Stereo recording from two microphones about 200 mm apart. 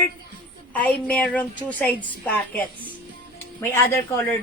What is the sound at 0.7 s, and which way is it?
A woman's voice, 5° left (ahead or behind).